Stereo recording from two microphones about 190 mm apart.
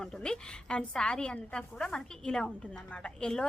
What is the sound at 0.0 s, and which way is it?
A woman's voice, 5° left (ahead or behind).